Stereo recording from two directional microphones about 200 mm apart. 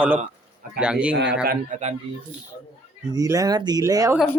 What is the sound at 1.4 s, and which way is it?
Speech, 35° right (ahead or behind).